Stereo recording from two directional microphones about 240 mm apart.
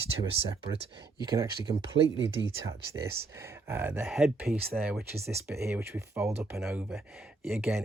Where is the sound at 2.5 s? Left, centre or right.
Centre.